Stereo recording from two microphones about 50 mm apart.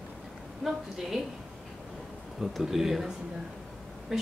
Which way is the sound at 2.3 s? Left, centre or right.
Centre.